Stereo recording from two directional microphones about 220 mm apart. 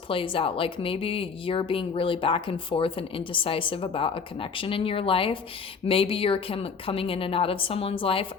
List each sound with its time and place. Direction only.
0.1 s a woman's voice: 25° left (ahead or behind)